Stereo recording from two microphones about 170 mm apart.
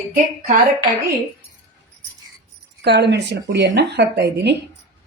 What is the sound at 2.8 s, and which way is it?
Speech, 80° right.